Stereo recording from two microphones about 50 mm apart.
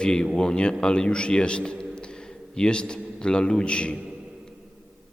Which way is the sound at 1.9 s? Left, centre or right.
Centre.